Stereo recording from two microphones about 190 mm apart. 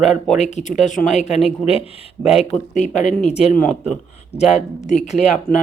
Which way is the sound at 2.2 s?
Centre (ahead or behind).